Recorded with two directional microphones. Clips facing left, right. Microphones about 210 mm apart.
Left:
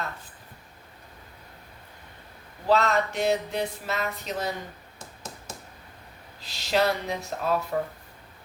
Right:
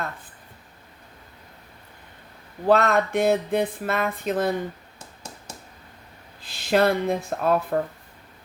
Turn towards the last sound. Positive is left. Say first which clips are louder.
# right 5 dB
turn(degrees=-55)  # may be behind; listen again after turning